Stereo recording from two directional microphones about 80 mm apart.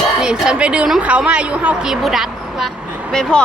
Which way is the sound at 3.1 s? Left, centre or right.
Centre.